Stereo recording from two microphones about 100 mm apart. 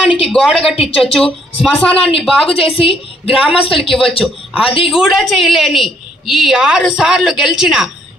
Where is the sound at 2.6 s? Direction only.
70° left (ahead or behind).